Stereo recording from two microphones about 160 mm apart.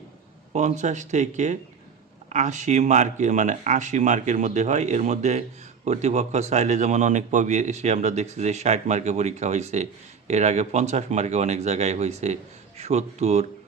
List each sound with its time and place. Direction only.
0.5 s speech: 50° right (ahead or behind)